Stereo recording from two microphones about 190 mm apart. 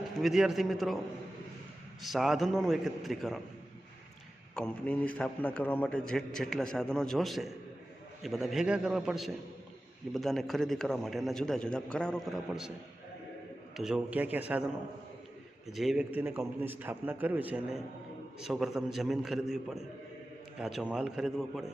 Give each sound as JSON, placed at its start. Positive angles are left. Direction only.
{"t": 0.2, "sound": "a man's voice", "side_deg": 0}
{"t": 2.0, "sound": "a man's voice", "side_deg": 0}
{"t": 4.5, "sound": "a man's voice", "side_deg": 5}
{"t": 13.7, "sound": "a man's voice", "side_deg": -5}
{"t": 15.6, "sound": "a man's voice", "side_deg": 0}